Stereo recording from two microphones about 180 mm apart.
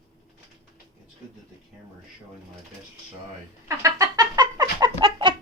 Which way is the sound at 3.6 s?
20° right (ahead or behind).